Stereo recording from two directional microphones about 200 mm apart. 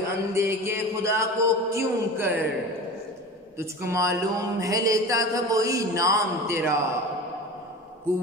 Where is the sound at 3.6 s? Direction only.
15° right (ahead or behind).